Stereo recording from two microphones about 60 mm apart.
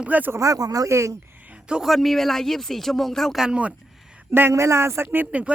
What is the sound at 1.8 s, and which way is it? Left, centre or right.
Speech, centre.